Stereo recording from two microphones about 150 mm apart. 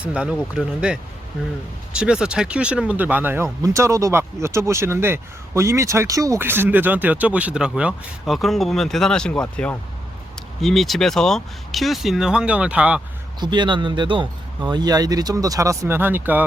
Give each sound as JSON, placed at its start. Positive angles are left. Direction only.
{"t": 0.0, "sound": "speech", "side_deg": -10}
{"t": 13.4, "sound": "speech", "side_deg": -30}